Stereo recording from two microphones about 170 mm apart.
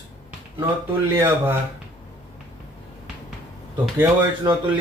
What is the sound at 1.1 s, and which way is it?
Speech, 15° right (ahead or behind).